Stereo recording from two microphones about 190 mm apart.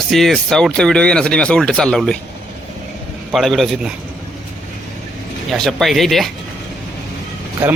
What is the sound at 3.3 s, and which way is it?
Speech, centre (ahead or behind).